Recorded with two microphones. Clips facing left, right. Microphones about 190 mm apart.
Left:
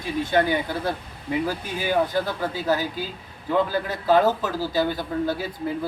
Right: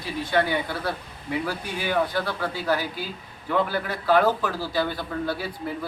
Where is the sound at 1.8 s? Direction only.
15° left (ahead or behind).